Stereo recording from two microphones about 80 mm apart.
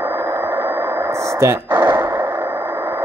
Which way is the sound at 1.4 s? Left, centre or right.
Right.